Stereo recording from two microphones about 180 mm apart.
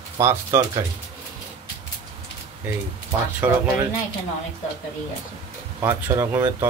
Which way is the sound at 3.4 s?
10° right (ahead or behind).